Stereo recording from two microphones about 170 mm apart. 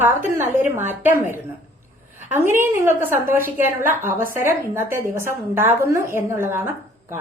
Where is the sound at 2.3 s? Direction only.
15° right (ahead or behind).